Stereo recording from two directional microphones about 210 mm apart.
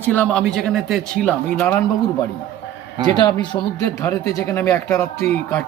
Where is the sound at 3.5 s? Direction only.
20° left (ahead or behind).